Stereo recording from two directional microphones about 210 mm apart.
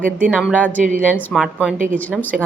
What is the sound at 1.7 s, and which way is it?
Speech, 40° right (ahead or behind).